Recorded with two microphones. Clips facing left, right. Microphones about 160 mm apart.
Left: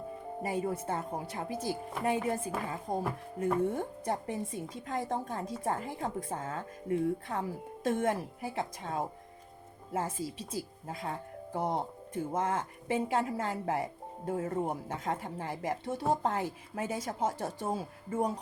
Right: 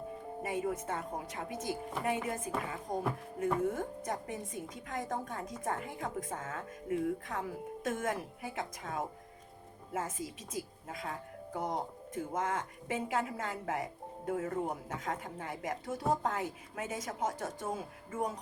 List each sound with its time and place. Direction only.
0.4 s a woman's voice: 30° left (ahead or behind)